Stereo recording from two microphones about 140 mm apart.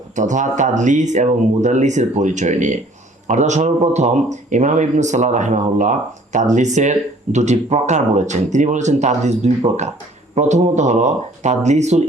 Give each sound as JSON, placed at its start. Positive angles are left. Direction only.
{"t": 0.2, "sound": "a man's voice", "side_deg": -60}